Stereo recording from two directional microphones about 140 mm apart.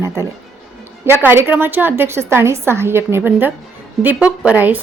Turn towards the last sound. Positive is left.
turn(degrees=-10)  # may be behind; listen again after turning